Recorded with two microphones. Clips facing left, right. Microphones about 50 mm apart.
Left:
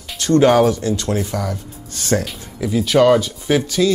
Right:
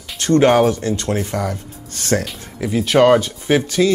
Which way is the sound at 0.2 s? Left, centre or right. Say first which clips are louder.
Even; right.